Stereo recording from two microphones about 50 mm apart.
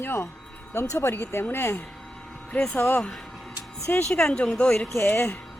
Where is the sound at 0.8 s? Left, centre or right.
Left.